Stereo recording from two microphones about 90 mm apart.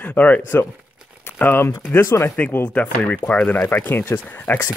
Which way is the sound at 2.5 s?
15° left (ahead or behind).